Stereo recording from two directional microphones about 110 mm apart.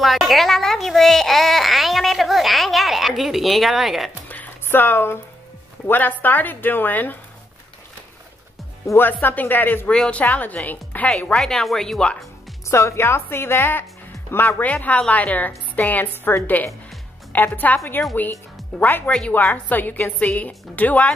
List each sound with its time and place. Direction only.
0.0 s a child's voice: centre (ahead or behind)
4.3 s music: 15° left (ahead or behind)
5.9 s a woman's voice: 15° left (ahead or behind)
8.8 s a woman's voice: 20° left (ahead or behind)
12.6 s a woman's voice: 25° left (ahead or behind)